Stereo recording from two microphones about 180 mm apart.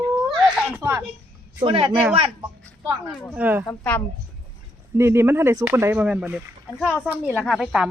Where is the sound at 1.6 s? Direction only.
30° right (ahead or behind).